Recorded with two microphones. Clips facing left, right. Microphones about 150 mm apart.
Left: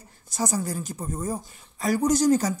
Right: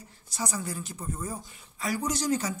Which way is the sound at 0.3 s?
45° left (ahead or behind).